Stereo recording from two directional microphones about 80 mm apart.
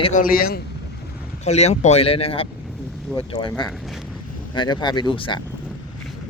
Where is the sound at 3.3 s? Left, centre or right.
Left.